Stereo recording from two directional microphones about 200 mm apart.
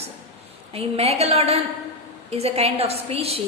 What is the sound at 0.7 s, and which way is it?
A woman's voice, 30° right (ahead or behind).